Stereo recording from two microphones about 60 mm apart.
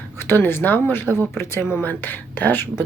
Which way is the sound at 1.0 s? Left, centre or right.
Right.